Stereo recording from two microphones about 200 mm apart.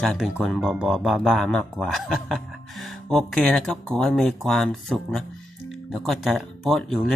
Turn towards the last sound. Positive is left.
turn(degrees=0)  # may be behind; listen again after turning